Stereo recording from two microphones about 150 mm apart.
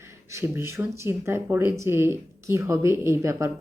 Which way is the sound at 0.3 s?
15° right (ahead or behind).